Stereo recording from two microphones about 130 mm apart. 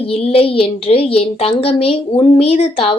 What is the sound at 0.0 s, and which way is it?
A woman's voice, 50° left (ahead or behind).